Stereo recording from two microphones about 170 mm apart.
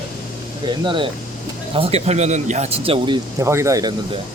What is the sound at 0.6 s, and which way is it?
Speech, 30° right (ahead or behind).